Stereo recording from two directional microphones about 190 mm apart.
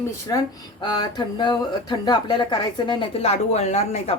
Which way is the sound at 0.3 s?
20° left (ahead or behind).